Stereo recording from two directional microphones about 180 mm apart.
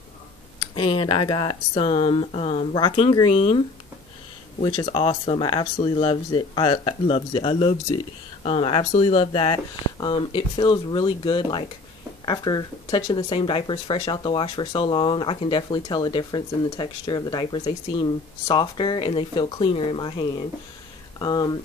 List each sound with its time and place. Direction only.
0.6 s speech: 30° left (ahead or behind)